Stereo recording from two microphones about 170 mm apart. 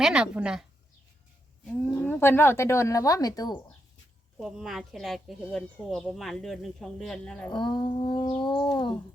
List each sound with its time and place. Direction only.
0.0 s speech: 5° right (ahead or behind)
1.6 s speech: 10° left (ahead or behind); by 3.6 s 25° left (ahead or behind)
4.4 s speech: 5° right (ahead or behind)
7.5 s a sound: 25° left (ahead or behind)